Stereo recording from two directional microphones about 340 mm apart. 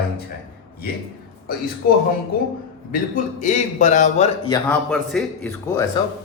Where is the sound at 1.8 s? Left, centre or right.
Left.